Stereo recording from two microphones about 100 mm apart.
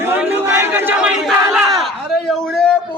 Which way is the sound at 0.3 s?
25° right (ahead or behind).